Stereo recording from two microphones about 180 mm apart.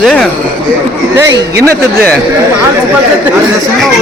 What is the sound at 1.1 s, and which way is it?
Speech, 15° right (ahead or behind).